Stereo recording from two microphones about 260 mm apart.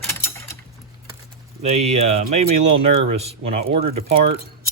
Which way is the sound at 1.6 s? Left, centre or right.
Right.